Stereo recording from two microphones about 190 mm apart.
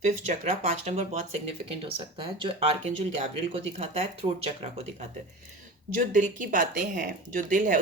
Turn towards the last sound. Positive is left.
turn(degrees=-45)  # may be behind; listen again after turning